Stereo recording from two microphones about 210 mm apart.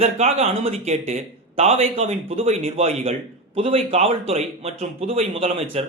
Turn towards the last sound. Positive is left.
turn(degrees=-25)  # may be behind; listen again after turning